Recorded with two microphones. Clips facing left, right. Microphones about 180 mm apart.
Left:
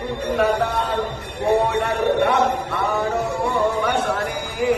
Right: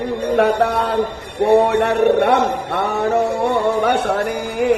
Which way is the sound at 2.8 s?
65° right (ahead or behind).